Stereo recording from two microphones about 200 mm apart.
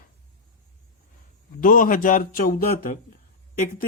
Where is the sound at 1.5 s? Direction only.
45° left (ahead or behind).